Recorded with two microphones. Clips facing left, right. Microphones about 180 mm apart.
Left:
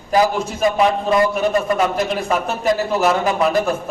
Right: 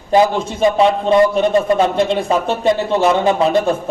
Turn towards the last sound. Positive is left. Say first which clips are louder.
# right 3 dB
turn(degrees=-25)  # may be behind; listen again after turning